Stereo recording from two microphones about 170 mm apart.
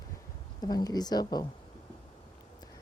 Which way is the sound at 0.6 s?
25° left (ahead or behind).